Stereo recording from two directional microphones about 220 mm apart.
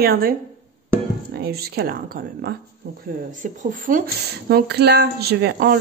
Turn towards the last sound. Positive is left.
turn(degrees=-45)  # may be behind; listen again after turning